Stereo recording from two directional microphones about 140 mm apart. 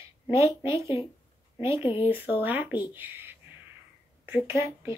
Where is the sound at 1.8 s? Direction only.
35° left (ahead or behind).